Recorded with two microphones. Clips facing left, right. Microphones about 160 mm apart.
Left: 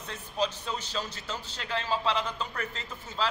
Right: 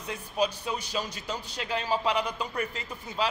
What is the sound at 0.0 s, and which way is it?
A man's voice, 10° right (ahead or behind).